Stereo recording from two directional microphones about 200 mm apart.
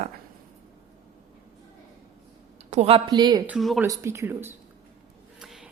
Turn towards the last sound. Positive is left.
turn(degrees=-5)  # may be behind; listen again after turning